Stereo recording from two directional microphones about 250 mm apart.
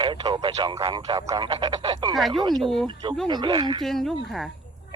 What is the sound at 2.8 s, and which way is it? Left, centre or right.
Speech, centre.